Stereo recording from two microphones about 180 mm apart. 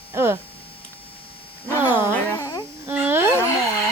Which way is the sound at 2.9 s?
10° right (ahead or behind).